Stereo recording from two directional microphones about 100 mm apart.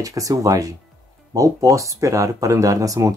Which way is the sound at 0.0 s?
35° right (ahead or behind).